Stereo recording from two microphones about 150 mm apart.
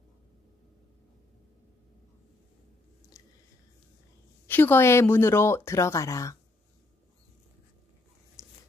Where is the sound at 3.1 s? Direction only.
20° left (ahead or behind).